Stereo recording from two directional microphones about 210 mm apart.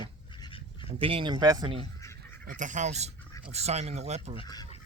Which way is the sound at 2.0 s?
15° left (ahead or behind).